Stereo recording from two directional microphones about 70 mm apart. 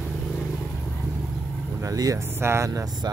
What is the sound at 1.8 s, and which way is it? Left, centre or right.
Speech, right.